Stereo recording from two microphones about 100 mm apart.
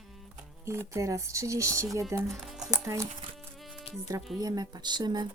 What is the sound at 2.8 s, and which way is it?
Speech, 30° right (ahead or behind).